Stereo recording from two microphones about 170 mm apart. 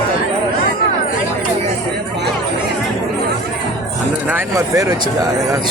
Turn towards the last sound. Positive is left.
turn(degrees=-20)  # may be behind; listen again after turning